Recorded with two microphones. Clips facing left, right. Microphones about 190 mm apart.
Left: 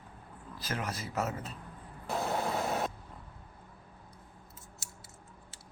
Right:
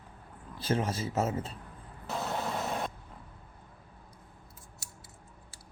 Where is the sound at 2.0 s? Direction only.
10° left (ahead or behind).